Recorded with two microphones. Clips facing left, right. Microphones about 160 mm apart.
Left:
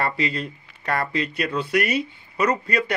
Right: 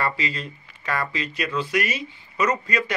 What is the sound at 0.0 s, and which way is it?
Speech, 60° left (ahead or behind).